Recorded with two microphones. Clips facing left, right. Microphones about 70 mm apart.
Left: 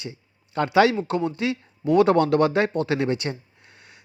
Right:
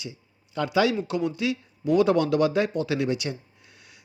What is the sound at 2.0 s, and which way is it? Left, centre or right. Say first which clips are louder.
Speech: left 3 dB; left.